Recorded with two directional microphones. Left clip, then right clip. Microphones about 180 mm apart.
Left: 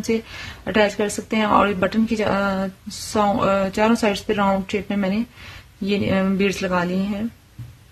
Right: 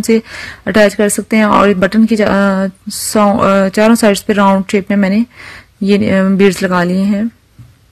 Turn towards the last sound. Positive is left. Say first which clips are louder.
# right 9 dB
turn(degrees=-35)  # may be behind; listen again after turning